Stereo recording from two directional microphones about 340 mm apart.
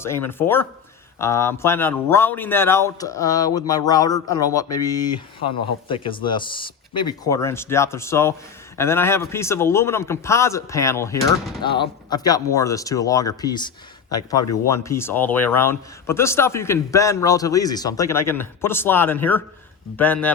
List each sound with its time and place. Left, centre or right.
0.0 s a man's voice: centre
14.7 s a man's voice: centre